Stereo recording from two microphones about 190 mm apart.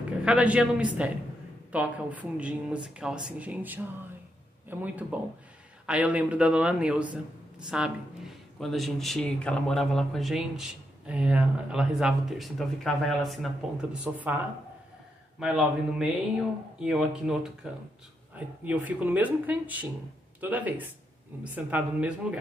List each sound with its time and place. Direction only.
0.2 s speech: 5° right (ahead or behind)
18.6 s speech: 10° right (ahead or behind)